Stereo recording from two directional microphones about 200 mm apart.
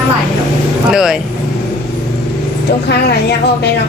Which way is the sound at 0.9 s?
Centre (ahead or behind).